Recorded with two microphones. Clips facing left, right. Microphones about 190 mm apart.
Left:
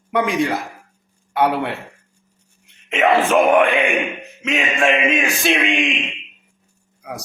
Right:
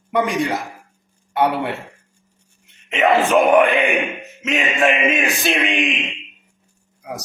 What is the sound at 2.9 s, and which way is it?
Speech, centre (ahead or behind).